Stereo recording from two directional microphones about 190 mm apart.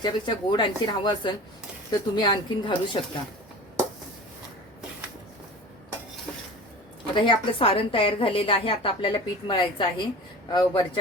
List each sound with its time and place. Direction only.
0.0 s a woman's voice: 25° left (ahead or behind)
7.1 s a woman's voice: 25° left (ahead or behind)